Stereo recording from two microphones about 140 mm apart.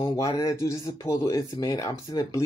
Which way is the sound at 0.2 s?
25° left (ahead or behind).